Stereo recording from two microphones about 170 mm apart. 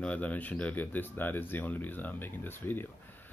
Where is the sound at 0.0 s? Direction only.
10° left (ahead or behind).